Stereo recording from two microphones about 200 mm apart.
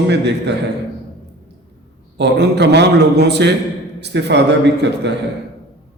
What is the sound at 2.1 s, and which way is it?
A man's voice, 60° right (ahead or behind).